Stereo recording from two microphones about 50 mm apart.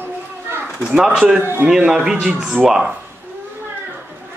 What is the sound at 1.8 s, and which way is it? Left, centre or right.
Speech, centre.